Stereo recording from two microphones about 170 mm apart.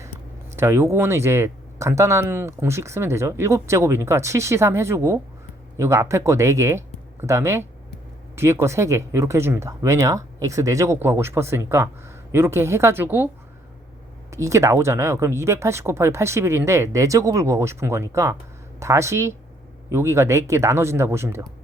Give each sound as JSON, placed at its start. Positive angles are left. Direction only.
{"t": 0.5, "sound": "speech", "side_deg": -15}
{"t": 14.3, "sound": "speech", "side_deg": -20}